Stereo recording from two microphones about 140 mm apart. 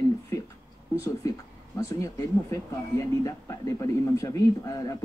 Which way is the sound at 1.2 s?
25° left (ahead or behind).